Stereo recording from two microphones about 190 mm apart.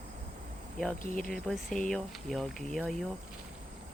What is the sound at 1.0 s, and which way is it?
Speech, 45° left (ahead or behind).